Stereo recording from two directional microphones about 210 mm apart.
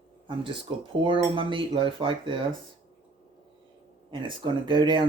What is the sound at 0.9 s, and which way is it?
Speech, 25° right (ahead or behind).